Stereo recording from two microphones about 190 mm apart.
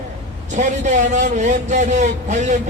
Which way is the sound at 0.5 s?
40° right (ahead or behind).